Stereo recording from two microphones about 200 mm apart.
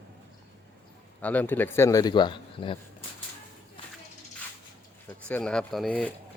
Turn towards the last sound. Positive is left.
turn(degrees=5)  # may be behind; listen again after turning